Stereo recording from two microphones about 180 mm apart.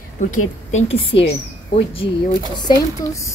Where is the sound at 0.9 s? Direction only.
30° left (ahead or behind).